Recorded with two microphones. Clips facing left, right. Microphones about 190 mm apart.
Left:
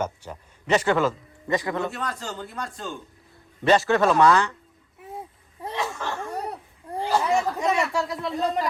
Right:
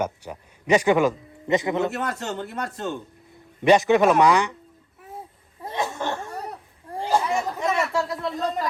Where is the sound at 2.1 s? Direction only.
65° right (ahead or behind).